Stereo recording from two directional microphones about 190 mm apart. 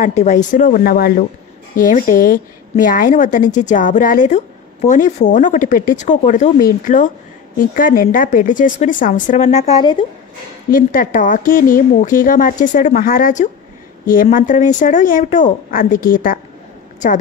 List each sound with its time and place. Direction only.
0.0 s speech: 40° left (ahead or behind)
10.7 s speech: 45° left (ahead or behind)